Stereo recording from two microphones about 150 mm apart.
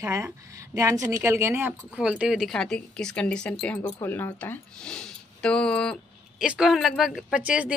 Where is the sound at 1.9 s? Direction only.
5° right (ahead or behind).